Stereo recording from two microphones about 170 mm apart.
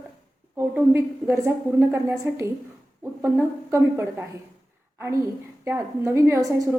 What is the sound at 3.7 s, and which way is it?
Speech, 15° right (ahead or behind).